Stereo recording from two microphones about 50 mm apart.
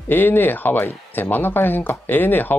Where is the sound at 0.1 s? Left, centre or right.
Left.